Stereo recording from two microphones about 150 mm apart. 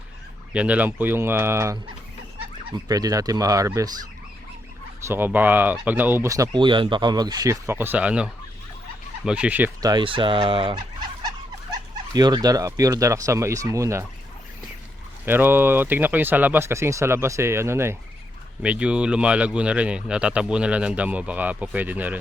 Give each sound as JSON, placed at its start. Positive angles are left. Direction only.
{"t": 0.5, "sound": "speech", "side_deg": -10}
{"t": 2.8, "sound": "speech", "side_deg": -25}
{"t": 5.0, "sound": "speech", "side_deg": -15}
{"t": 9.8, "sound": "fowl", "side_deg": -30}
{"t": 12.1, "sound": "speech", "side_deg": -25}
{"t": 15.3, "sound": "speech", "side_deg": -15}